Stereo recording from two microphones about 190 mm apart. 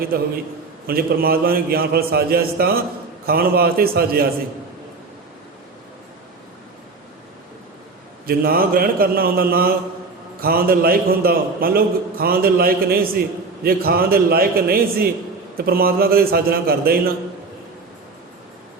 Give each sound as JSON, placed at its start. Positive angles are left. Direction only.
{"t": 0.1, "sound": "a man's voice", "side_deg": -55}
{"t": 8.3, "sound": "a man's voice", "side_deg": -50}